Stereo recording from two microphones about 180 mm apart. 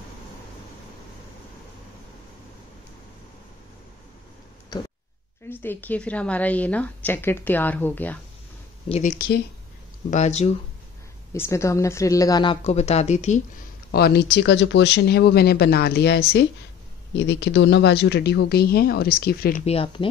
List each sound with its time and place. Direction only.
5.5 s a woman's voice: 10° left (ahead or behind)
8.8 s speech: 35° left (ahead or behind)
10.1 s speech: 40° left (ahead or behind)
11.3 s a woman's voice: 15° left (ahead or behind)
12.6 s speech: 35° left (ahead or behind)
13.9 s speech: 60° left (ahead or behind)
17.1 s speech: 75° left (ahead or behind); by 19.6 s 60° left (ahead or behind)
19.6 s speech: 30° left (ahead or behind)